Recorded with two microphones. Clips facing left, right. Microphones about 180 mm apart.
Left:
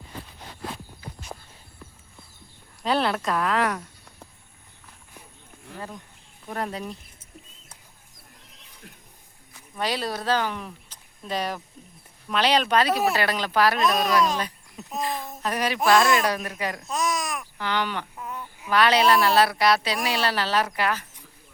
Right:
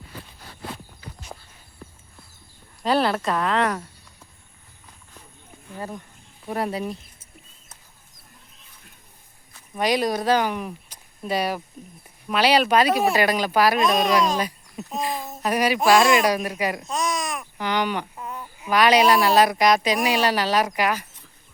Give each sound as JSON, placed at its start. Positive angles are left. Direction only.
{"t": 2.8, "sound": "speech", "side_deg": 0}
{"t": 6.5, "sound": "speech", "side_deg": -10}
{"t": 8.4, "sound": "a sound", "side_deg": 80}
{"t": 9.7, "sound": "speech", "side_deg": -15}
{"t": 14.3, "sound": "a sound", "side_deg": -10}
{"t": 15.0, "sound": "speech", "side_deg": -10}
{"t": 16.9, "sound": "babbling", "side_deg": 0}
{"t": 17.4, "sound": "baby cry", "side_deg": -15}
{"t": 18.7, "sound": "speech", "side_deg": -15}